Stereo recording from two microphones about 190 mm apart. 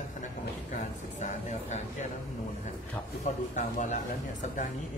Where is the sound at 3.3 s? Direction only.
40° left (ahead or behind).